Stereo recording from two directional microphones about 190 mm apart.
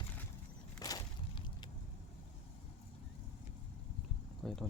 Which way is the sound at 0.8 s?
20° left (ahead or behind).